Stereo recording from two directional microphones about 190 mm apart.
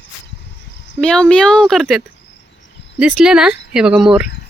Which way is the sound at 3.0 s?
5° right (ahead or behind).